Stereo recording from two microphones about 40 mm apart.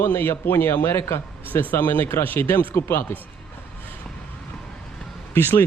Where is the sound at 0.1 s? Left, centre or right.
Left.